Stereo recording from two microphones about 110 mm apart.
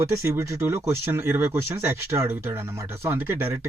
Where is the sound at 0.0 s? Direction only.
25° right (ahead or behind).